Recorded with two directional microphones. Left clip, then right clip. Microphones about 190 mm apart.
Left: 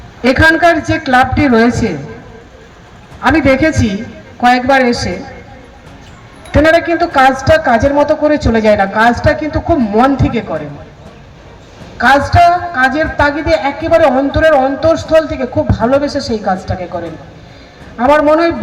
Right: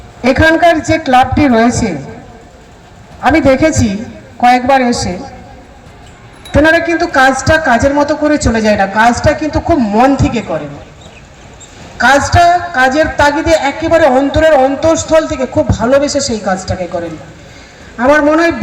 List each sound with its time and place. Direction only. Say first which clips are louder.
0.2 s a man's voice: even; 60° right (ahead or behind)
3.2 s a man's voice: right 1 dB; 60° right (ahead or behind)
6.8 s a man's voice: even; 60° right (ahead or behind)
11.9 s a woman's voice: even; 55° right (ahead or behind)